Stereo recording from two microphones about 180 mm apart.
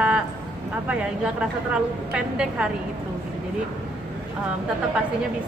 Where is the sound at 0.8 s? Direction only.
5° right (ahead or behind).